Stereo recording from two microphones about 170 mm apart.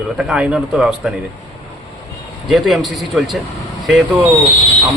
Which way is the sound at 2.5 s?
Centre (ahead or behind).